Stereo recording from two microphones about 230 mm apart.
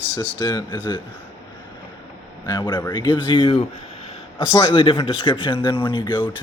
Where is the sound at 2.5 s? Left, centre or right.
Centre.